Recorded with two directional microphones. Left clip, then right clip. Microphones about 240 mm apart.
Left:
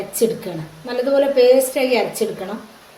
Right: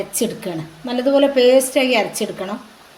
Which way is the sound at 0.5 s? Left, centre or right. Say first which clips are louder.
Right 2 dB; right.